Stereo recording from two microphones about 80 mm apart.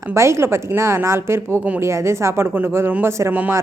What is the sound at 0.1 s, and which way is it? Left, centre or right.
A woman's voice, right.